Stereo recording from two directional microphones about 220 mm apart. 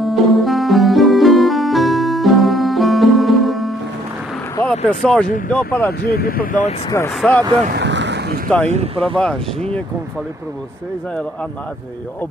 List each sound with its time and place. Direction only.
0.0 s music: centre (ahead or behind)
4.6 s speech: 5° left (ahead or behind)
6.0 s speech: 45° left (ahead or behind)
7.2 s speech: 5° left (ahead or behind)
7.6 s boat: 50° right (ahead or behind)
8.6 s speech: 30° right (ahead or behind)